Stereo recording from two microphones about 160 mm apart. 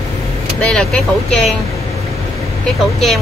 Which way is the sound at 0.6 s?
5° left (ahead or behind).